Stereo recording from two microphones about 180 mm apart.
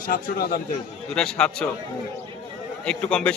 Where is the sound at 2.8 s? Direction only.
5° left (ahead or behind).